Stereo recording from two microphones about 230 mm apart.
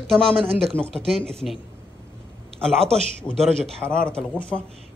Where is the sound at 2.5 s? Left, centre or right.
Centre.